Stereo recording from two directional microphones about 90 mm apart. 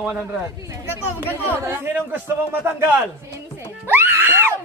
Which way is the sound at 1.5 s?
25° right (ahead or behind).